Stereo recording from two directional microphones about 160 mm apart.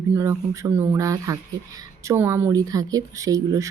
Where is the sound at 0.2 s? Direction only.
20° right (ahead or behind).